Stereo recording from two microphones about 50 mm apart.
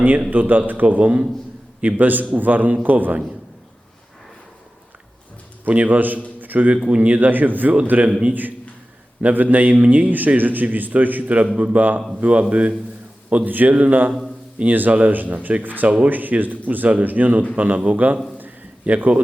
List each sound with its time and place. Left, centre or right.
0.3 s a man's voice: right
5.6 s a man's voice: right
6.4 s a sound: right
6.8 s a man's voice: right
13.3 s a man's voice: right
18.3 s a sound: right